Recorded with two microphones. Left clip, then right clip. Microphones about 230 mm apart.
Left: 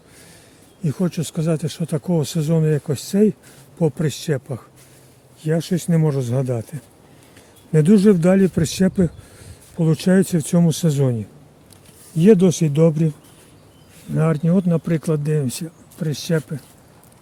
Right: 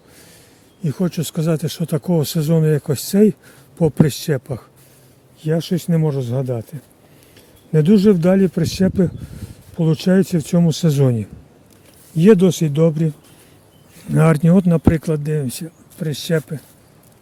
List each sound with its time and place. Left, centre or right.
0.8 s speech: centre
14.1 s speech: right; by 16.6 s centre